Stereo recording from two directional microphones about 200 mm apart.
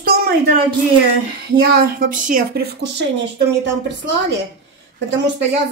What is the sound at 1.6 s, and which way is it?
Speech, 50° right (ahead or behind).